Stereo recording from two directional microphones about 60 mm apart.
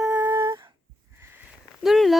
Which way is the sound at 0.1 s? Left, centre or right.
Right.